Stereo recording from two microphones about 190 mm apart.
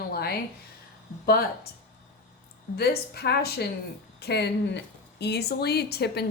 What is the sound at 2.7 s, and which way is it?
Speech, 55° left (ahead or behind).